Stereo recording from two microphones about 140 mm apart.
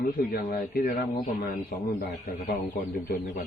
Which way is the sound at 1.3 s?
90° left.